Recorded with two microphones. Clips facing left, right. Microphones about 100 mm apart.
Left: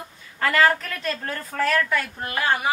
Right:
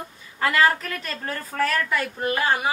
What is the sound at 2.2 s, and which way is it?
Speech, 20° right (ahead or behind).